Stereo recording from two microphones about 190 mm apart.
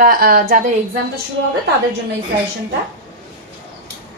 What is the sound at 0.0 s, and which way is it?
Speech, 50° right (ahead or behind).